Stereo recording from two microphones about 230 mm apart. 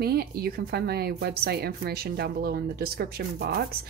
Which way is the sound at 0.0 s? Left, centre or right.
Right.